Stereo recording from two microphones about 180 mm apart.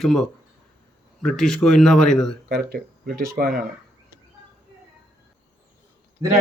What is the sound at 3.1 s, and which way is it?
Speech, 50° right (ahead or behind).